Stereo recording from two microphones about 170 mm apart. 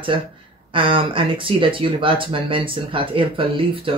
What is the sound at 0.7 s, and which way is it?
Speech, 30° right (ahead or behind).